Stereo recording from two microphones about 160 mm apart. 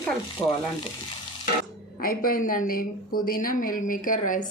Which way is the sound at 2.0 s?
65° left (ahead or behind).